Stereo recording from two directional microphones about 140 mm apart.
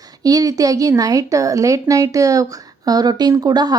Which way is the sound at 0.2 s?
25° right (ahead or behind).